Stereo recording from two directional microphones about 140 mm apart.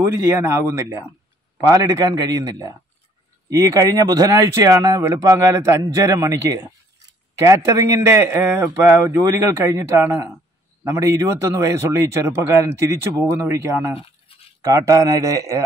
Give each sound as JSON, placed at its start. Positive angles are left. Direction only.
{"t": 0.0, "sound": "speech", "side_deg": -20}
{"t": 13.9, "sound": "a sound", "side_deg": 40}
{"t": 14.6, "sound": "speech", "side_deg": -25}